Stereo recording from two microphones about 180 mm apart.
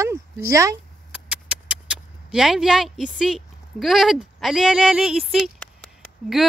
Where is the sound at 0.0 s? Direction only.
15° right (ahead or behind).